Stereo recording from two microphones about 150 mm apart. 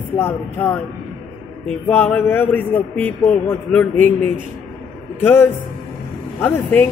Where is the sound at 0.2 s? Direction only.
15° left (ahead or behind).